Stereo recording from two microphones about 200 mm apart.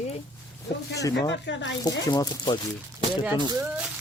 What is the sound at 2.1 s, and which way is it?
Speech, 20° left (ahead or behind).